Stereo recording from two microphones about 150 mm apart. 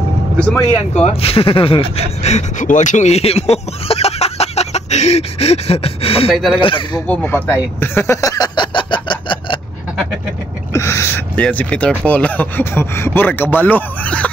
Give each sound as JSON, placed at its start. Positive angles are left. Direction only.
{"t": 0.9, "sound": "speech", "side_deg": 45}
{"t": 6.3, "sound": "speech", "side_deg": 0}
{"t": 6.6, "sound": "speech", "side_deg": 35}
{"t": 7.1, "sound": "a sound", "side_deg": 10}
{"t": 10.7, "sound": "gasp", "side_deg": 20}
{"t": 12.0, "sound": "speech", "side_deg": 10}